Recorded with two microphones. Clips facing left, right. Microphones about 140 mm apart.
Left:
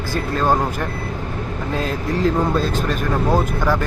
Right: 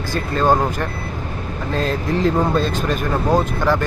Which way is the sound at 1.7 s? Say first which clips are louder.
Right 2 dB; 5° left (ahead or behind).